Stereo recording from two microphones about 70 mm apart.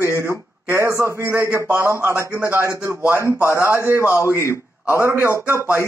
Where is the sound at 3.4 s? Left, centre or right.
Left.